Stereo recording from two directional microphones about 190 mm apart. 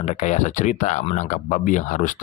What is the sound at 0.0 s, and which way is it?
Speech, 40° left (ahead or behind).